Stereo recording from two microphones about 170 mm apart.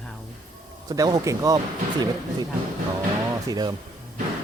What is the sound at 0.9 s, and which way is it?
Speech, 20° right (ahead or behind).